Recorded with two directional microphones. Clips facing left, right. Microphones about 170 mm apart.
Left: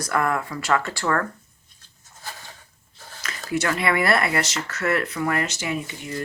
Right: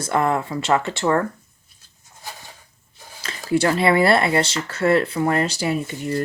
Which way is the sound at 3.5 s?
30° right (ahead or behind).